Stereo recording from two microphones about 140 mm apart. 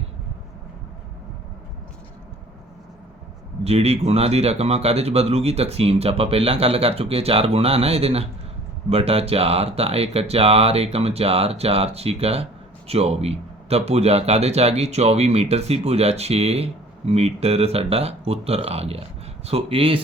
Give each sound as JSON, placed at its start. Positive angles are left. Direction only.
{"t": 3.6, "sound": "speech", "side_deg": -50}